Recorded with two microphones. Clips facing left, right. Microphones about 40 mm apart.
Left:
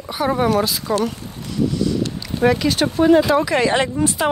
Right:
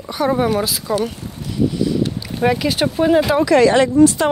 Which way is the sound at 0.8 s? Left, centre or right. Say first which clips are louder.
Even; centre.